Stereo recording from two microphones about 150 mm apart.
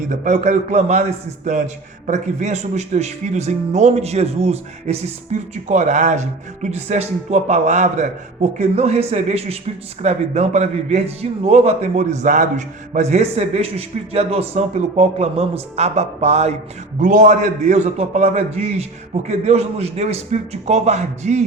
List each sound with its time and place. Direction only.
0.1 s a man's voice: 55° right (ahead or behind)
17.0 s a man's voice: 60° right (ahead or behind)